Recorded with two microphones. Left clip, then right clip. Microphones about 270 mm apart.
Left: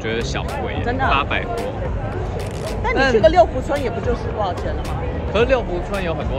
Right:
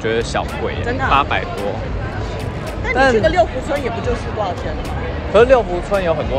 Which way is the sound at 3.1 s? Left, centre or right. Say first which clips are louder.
Left 2 dB; left.